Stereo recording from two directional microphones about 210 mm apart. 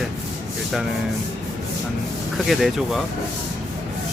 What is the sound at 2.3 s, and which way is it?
Speech, centre (ahead or behind).